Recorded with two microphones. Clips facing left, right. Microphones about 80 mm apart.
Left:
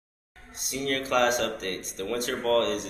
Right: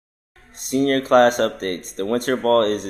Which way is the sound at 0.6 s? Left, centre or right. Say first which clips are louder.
Right 11 dB; right.